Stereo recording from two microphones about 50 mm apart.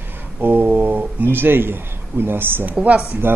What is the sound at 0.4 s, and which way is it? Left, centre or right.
A man's voice, right.